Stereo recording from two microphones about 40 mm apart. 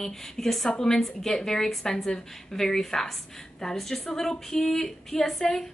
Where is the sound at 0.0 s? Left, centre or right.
Centre.